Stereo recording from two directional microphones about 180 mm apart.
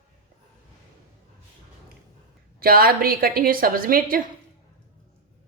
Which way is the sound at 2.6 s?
55° right (ahead or behind).